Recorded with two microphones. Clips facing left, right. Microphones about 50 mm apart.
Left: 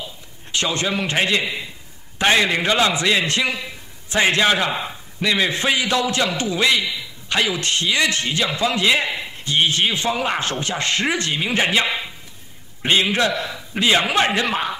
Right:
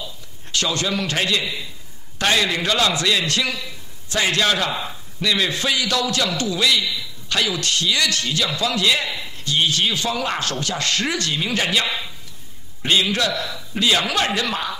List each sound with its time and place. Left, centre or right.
0.0 s a man's voice: left